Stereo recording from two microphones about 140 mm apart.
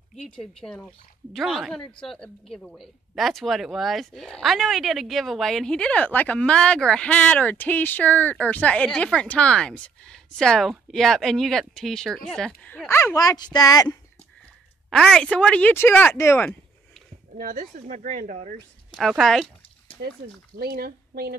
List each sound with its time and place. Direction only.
0.1 s speech: 5° left (ahead or behind); by 13.9 s 25° left (ahead or behind)
14.9 s speech: 5° left (ahead or behind)
17.4 s speech: 70° right (ahead or behind)
18.9 s speech: centre (ahead or behind)
20.5 s speech: 90° right